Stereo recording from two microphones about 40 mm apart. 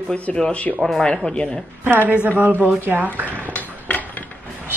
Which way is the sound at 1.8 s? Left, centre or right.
Right.